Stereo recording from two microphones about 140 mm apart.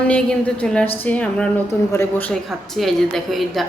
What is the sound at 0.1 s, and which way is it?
A woman's voice, 10° left (ahead or behind).